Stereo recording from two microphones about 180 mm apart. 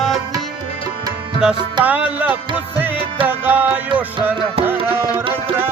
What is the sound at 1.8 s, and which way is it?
Music, 10° right (ahead or behind).